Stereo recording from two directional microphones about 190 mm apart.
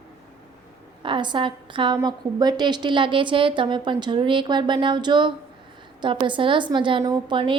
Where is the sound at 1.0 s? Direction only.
25° right (ahead or behind).